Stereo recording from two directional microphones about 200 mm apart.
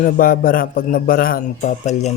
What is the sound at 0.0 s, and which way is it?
A man's voice, 45° left (ahead or behind).